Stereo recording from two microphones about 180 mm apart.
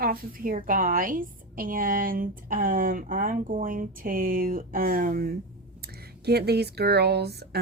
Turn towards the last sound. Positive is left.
turn(degrees=-65)  # may be behind; listen again after turning